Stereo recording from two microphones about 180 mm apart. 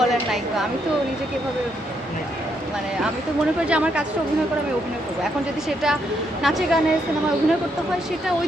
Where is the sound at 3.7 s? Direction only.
5° right (ahead or behind).